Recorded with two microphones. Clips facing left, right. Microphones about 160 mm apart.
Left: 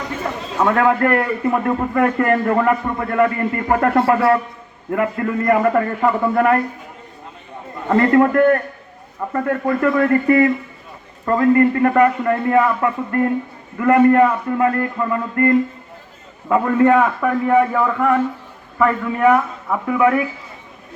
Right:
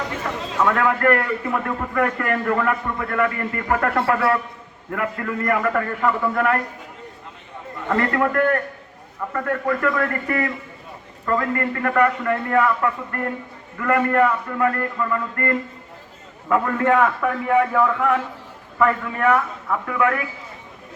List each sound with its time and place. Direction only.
0.6 s a man's voice: 30° left (ahead or behind)
7.9 s a man's voice: 25° left (ahead or behind)
16.5 s a man's voice: 5° left (ahead or behind)